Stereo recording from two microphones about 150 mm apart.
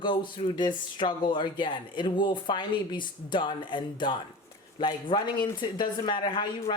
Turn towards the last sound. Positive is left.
turn(degrees=30)  # may be behind; listen again after turning